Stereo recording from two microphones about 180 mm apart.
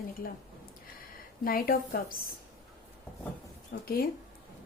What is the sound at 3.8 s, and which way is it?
Speech, 55° left (ahead or behind).